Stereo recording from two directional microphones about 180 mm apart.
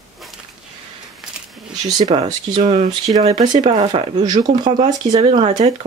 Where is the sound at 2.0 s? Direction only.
30° right (ahead or behind).